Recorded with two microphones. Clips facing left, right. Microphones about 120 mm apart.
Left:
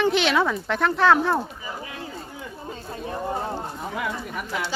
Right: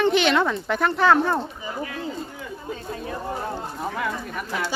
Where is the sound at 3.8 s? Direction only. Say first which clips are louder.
Right 2 dB; 10° left (ahead or behind).